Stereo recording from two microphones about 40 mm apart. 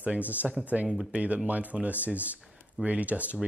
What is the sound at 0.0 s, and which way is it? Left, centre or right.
Speech, right.